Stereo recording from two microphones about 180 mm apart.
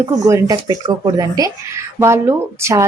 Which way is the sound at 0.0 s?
15° right (ahead or behind).